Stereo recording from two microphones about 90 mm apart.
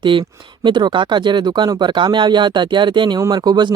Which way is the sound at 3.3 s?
50° right (ahead or behind).